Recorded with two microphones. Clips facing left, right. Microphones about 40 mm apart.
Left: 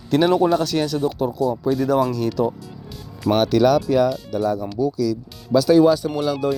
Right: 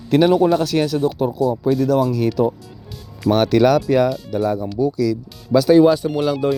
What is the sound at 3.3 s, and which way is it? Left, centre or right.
Speech, right.